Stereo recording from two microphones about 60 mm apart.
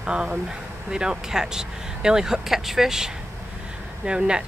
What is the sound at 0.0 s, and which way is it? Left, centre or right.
Speech, centre.